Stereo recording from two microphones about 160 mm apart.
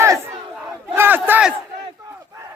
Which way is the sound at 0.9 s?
15° right (ahead or behind).